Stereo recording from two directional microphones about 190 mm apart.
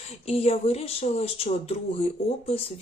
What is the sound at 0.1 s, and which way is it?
Speech, 30° left (ahead or behind).